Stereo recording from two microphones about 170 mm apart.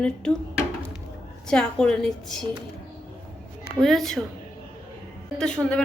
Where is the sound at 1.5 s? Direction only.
5° left (ahead or behind).